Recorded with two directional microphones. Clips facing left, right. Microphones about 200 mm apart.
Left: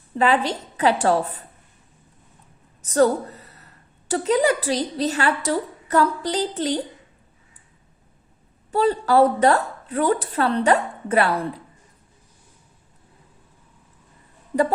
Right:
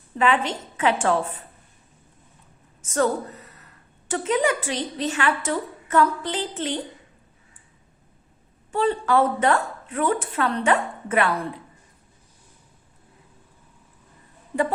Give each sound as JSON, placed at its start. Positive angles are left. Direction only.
{"t": 0.2, "sound": "a woman's voice", "side_deg": 35}
{"t": 2.8, "sound": "a woman's voice", "side_deg": 35}
{"t": 8.7, "sound": "a woman's voice", "side_deg": 40}